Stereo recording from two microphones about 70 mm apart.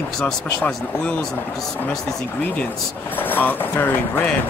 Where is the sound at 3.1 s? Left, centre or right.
Left.